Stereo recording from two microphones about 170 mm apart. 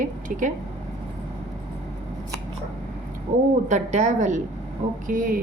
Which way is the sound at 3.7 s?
45° right (ahead or behind).